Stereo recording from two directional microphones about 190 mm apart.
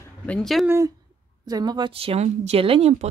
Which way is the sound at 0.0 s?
5° left (ahead or behind).